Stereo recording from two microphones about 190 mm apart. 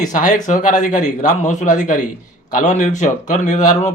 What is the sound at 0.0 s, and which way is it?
Speech, 40° left (ahead or behind).